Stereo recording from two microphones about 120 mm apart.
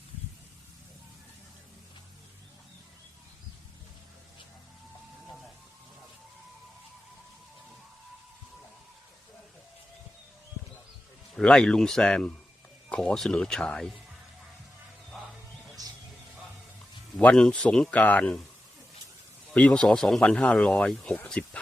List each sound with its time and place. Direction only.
11.3 s speech: 5° left (ahead or behind)
15.1 s music: centre (ahead or behind)
15.8 s music: 30° right (ahead or behind)
17.2 s speech: 10° left (ahead or behind)
19.5 s speech: 10° left (ahead or behind)